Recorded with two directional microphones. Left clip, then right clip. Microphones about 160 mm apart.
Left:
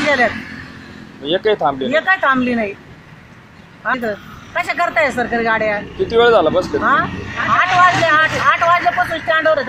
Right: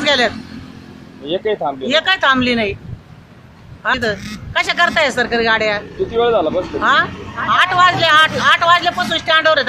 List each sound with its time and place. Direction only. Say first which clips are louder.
0.0 s vehicle: even; 30° right (ahead or behind)
1.2 s speech: left 3 dB; 15° left (ahead or behind)
1.9 s speech: right 3 dB; 30° right (ahead or behind)
3.8 s speech: right 2 dB; 30° right (ahead or behind)
6.1 s speech: left 4 dB; 15° left (ahead or behind)
6.8 s speech: right 1 dB; 30° right (ahead or behind)